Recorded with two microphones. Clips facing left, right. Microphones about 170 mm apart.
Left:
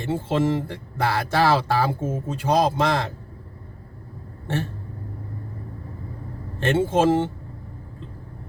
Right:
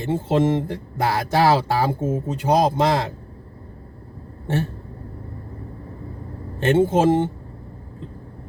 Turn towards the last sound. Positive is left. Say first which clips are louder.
# right 2 dB
turn(degrees=-15)  # may be behind; listen again after turning